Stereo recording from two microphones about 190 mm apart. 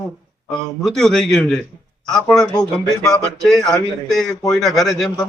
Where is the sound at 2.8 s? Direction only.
20° left (ahead or behind).